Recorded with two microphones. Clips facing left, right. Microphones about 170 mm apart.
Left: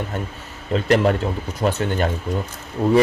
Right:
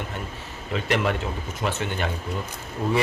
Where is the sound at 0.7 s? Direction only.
40° left (ahead or behind).